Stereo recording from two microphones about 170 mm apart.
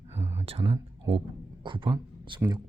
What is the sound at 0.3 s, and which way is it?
Speech, 35° right (ahead or behind).